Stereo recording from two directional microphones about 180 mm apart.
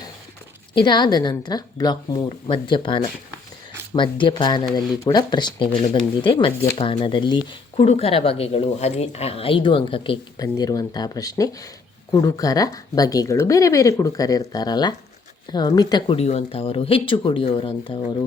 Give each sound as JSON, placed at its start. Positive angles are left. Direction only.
{"t": 0.7, "sound": "speech", "side_deg": 25}